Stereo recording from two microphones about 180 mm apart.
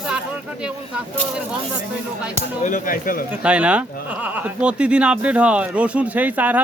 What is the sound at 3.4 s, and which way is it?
Speech, 5° right (ahead or behind).